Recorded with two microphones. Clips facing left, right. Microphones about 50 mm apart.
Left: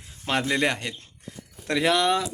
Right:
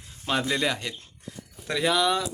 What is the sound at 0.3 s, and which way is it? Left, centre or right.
Speech, left.